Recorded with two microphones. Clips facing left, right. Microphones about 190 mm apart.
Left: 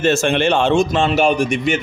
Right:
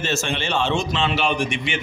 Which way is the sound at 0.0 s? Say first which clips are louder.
Left 10 dB; 50° left (ahead or behind).